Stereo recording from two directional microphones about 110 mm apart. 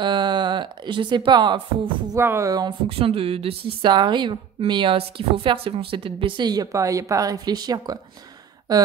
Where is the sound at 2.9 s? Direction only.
60° right (ahead or behind).